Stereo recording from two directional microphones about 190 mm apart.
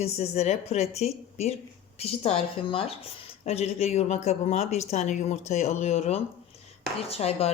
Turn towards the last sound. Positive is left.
turn(degrees=30)  # may be behind; listen again after turning